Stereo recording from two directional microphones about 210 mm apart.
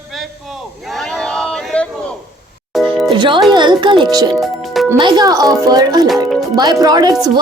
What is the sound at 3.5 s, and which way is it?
Speech, 20° right (ahead or behind).